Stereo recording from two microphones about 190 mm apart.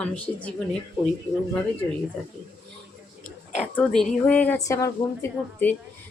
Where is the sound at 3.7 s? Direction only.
5° left (ahead or behind).